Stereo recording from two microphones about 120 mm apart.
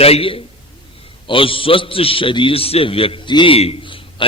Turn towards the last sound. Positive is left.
turn(degrees=45)  # may be behind; listen again after turning